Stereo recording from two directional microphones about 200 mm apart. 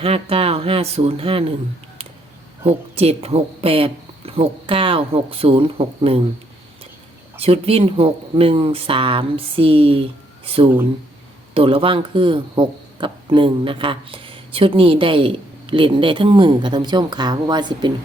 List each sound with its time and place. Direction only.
0.0 s speech: 30° right (ahead or behind)
2.6 s speech: 30° right (ahead or behind)
7.3 s speech: 30° right (ahead or behind)